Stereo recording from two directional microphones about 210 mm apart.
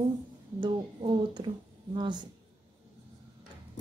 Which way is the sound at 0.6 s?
20° right (ahead or behind).